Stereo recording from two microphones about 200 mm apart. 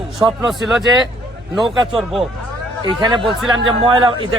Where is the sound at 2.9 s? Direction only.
25° right (ahead or behind).